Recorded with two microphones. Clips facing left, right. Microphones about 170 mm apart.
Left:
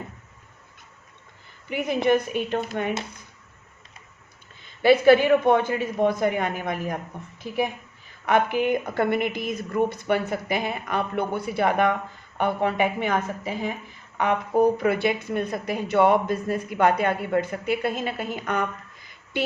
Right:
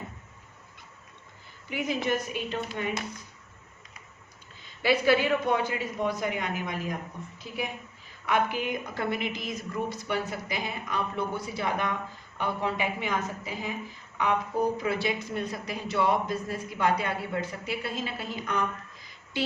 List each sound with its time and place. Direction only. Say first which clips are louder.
1.7 s speech: left 7 dB; 60° left (ahead or behind)
4.8 s a woman's voice: left 8 dB; 55° left (ahead or behind)
8.3 s speech: left 6 dB; 55° left (ahead or behind)